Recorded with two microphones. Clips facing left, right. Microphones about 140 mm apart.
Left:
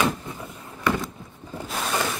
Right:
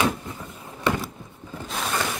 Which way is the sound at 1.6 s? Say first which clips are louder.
Left 1 dB; centre (ahead or behind).